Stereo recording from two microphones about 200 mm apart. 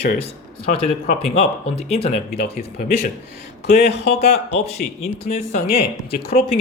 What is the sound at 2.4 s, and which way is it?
Speech, 50° left (ahead or behind).